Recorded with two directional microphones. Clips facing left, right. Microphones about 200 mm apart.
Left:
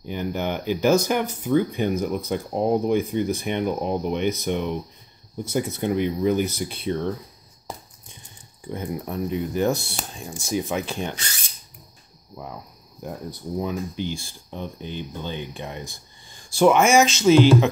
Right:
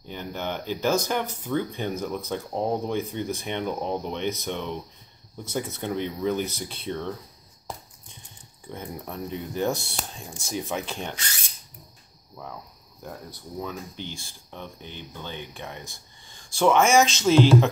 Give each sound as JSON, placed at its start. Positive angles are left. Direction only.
{"t": 0.0, "sound": "speech", "side_deg": 10}
{"t": 8.6, "sound": "speech", "side_deg": 10}
{"t": 13.0, "sound": "speech", "side_deg": 15}